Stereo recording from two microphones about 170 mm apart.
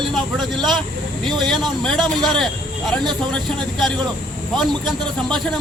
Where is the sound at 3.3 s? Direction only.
Centre (ahead or behind).